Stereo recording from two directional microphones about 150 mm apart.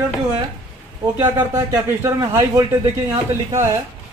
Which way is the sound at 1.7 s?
20° right (ahead or behind).